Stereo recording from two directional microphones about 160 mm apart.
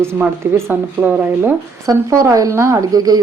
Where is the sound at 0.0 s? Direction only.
15° right (ahead or behind).